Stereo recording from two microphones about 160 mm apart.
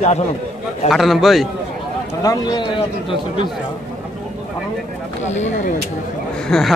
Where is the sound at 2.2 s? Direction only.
25° left (ahead or behind).